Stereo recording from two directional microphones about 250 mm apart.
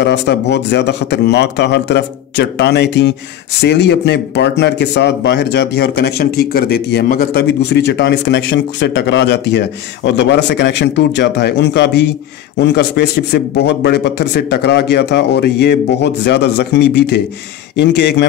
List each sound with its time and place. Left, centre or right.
0.0 s speech: left